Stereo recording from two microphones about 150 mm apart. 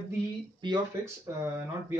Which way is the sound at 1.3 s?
15° right (ahead or behind).